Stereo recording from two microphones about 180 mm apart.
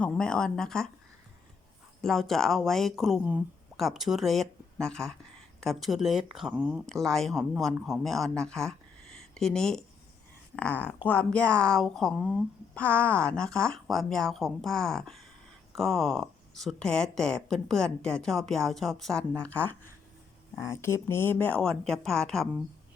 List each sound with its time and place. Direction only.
0.0 s speech: 5° left (ahead or behind)
2.0 s speech: centre (ahead or behind)